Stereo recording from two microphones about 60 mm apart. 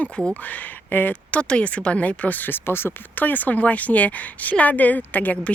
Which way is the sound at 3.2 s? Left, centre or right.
Left.